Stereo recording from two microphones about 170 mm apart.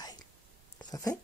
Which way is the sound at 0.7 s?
20° left (ahead or behind).